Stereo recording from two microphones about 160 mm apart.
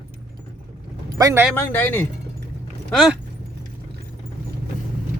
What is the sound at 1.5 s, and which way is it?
Speech, 10° left (ahead or behind).